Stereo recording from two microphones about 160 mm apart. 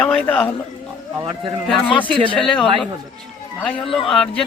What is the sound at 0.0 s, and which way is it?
Speech, 10° left (ahead or behind).